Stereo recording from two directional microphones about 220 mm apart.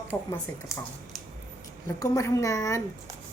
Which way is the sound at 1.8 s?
15° left (ahead or behind).